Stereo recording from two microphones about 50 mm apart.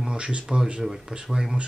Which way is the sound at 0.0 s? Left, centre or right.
Centre.